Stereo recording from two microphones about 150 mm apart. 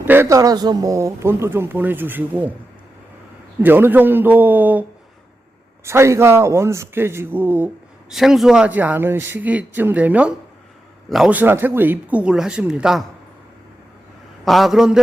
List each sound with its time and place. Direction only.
0.0 s speech: 15° right (ahead or behind)
3.6 s speech: 15° right (ahead or behind)
14.4 s a man's voice: centre (ahead or behind)